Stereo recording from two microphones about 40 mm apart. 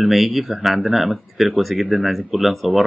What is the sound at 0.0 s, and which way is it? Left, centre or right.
Speech, centre.